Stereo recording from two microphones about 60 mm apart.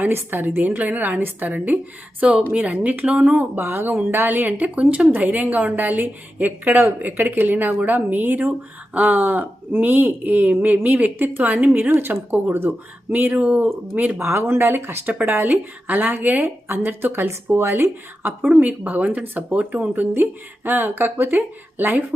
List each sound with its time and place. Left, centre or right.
0.0 s a woman's voice: right
3.6 s a woman's voice: right
14.2 s a woman's voice: right
15.0 s a woman's voice: right
18.4 s a woman's voice: right